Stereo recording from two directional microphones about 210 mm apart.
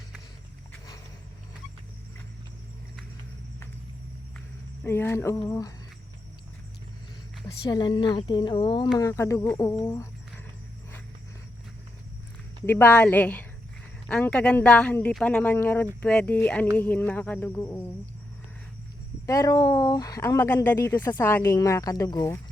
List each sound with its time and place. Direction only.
4.8 s speech: 10° left (ahead or behind)
7.4 s speech: 20° left (ahead or behind)
12.6 s speech: 10° left (ahead or behind)
19.2 s speech: 15° left (ahead or behind)